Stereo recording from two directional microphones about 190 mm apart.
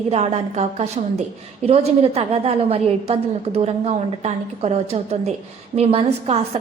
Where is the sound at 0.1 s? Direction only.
35° right (ahead or behind).